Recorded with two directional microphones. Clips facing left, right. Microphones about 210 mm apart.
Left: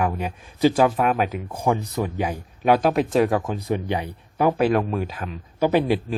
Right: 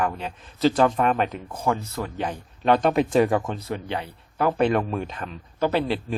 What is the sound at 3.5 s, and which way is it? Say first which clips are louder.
Speech: left 5 dB; 15° left (ahead or behind).